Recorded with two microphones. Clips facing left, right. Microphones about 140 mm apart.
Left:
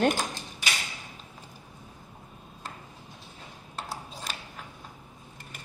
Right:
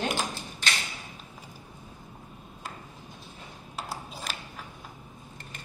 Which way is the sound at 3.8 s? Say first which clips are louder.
Right 1 dB; 5° right (ahead or behind).